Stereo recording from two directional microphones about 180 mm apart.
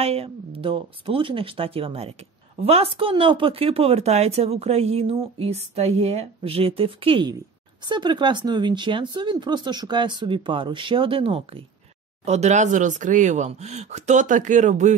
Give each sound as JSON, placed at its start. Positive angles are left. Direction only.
{"t": 0.0, "sound": "speech", "side_deg": -35}